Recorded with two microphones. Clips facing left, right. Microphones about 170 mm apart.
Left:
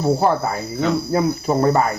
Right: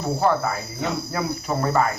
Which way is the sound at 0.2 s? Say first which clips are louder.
Left 3 dB; 35° left (ahead or behind).